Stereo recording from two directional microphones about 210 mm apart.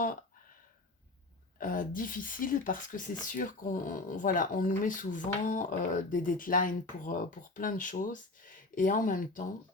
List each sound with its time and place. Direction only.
1.5 s speech: 40° left (ahead or behind)